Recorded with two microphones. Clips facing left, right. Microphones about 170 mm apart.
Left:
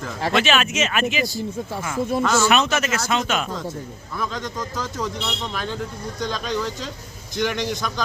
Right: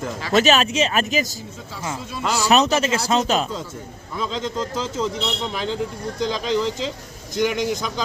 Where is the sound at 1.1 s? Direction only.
45° right (ahead or behind).